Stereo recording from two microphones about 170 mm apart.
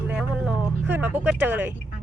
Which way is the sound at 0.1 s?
5° right (ahead or behind).